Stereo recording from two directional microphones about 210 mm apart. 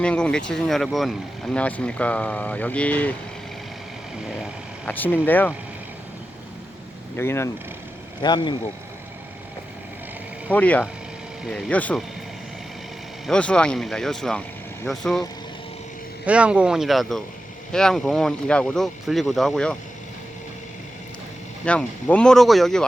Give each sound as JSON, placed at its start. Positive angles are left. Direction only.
{"t": 0.0, "sound": "speech", "side_deg": 5}
{"t": 4.9, "sound": "speech", "side_deg": 10}
{"t": 7.2, "sound": "speech", "side_deg": 10}
{"t": 10.5, "sound": "speech", "side_deg": 5}
{"t": 13.2, "sound": "speech", "side_deg": 5}
{"t": 16.2, "sound": "speech", "side_deg": -5}
{"t": 21.6, "sound": "speech", "side_deg": 5}